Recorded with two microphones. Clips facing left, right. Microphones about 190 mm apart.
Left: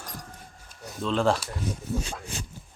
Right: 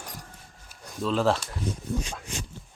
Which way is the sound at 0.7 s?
5° right (ahead or behind).